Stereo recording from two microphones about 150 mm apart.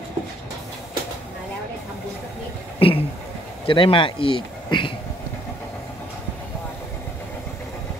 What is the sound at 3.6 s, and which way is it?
Speech, 35° left (ahead or behind).